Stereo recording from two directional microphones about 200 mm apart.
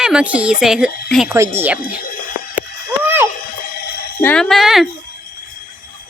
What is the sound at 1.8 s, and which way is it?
Speech, 45° left (ahead or behind).